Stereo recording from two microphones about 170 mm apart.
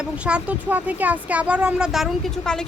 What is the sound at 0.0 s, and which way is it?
Speech, 5° right (ahead or behind).